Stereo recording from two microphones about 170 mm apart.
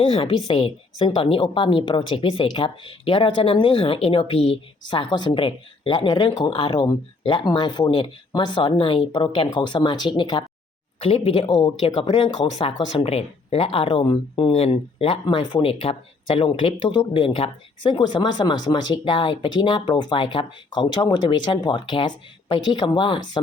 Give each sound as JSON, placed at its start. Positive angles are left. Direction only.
{"t": 0.0, "sound": "a woman's voice", "side_deg": 35}